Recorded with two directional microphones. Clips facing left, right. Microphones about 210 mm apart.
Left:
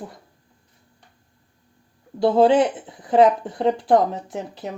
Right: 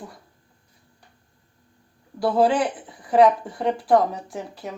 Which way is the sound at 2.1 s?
25° left (ahead or behind).